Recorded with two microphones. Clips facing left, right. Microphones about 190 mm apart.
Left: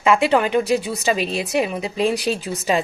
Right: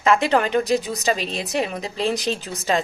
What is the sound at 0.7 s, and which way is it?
Speech, 35° right (ahead or behind).